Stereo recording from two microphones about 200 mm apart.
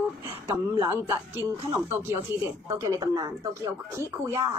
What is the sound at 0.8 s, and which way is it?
Speech, 10° right (ahead or behind).